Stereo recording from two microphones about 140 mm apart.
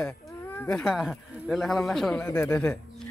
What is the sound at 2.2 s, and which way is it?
Speech, 15° left (ahead or behind).